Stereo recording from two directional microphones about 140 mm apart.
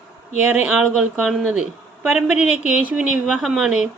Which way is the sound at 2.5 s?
55° left (ahead or behind).